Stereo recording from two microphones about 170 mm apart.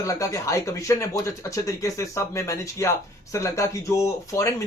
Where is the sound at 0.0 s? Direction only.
20° left (ahead or behind).